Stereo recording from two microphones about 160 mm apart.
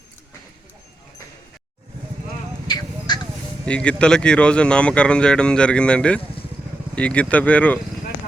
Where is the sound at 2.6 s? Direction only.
25° left (ahead or behind).